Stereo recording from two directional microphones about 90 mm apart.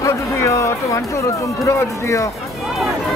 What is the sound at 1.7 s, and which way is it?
Music, 35° left (ahead or behind).